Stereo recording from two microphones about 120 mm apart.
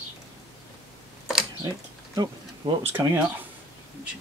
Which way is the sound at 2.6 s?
35° right (ahead or behind).